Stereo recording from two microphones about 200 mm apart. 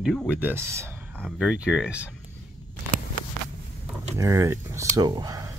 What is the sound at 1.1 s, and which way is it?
Speech, centre (ahead or behind).